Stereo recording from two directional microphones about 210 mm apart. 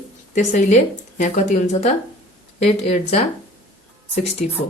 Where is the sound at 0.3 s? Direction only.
35° left (ahead or behind).